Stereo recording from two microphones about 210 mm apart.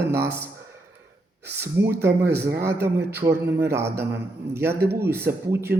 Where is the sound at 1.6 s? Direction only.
10° right (ahead or behind).